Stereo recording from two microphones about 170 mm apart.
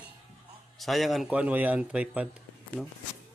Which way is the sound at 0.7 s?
Centre (ahead or behind).